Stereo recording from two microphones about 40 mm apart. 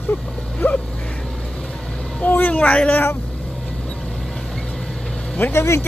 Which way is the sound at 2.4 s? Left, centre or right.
Left.